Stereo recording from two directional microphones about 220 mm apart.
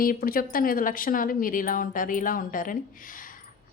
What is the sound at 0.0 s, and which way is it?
A woman's voice, 40° left (ahead or behind).